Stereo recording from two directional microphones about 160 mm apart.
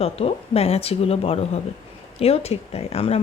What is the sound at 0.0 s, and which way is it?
Speech, 40° left (ahead or behind).